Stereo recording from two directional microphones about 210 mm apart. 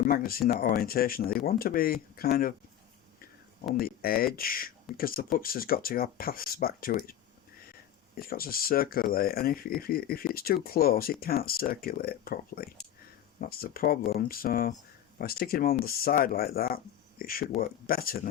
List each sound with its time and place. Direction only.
0.1 s speech: 45° left (ahead or behind)
3.8 s speech: 45° left (ahead or behind)